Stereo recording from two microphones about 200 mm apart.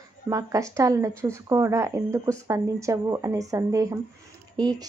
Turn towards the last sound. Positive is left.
turn(degrees=-20)  # may be behind; listen again after turning